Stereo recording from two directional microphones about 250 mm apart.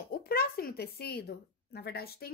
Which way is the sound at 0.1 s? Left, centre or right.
Left.